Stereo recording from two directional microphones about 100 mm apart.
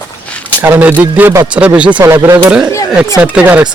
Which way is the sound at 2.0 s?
30° right (ahead or behind).